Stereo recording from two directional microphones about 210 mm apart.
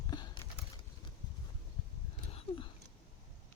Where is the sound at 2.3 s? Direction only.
30° left (ahead or behind).